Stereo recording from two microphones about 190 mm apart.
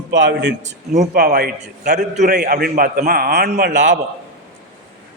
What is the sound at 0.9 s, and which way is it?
A man's voice, 50° right (ahead or behind).